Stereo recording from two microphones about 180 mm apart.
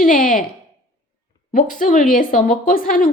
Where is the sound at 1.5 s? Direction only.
45° left (ahead or behind).